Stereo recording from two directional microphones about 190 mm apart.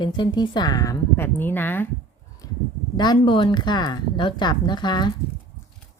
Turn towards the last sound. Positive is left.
turn(degrees=25)  # may be behind; listen again after turning